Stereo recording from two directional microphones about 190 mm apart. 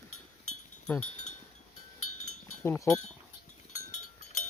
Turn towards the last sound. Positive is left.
turn(degrees=40)  # may be behind; listen again after turning